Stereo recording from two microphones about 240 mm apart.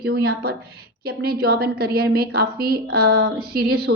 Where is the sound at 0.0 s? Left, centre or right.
Right.